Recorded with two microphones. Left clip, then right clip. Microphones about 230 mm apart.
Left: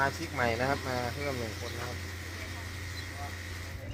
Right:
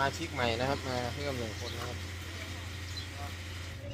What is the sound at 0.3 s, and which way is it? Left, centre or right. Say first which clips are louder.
Speech: left 3 dB; centre.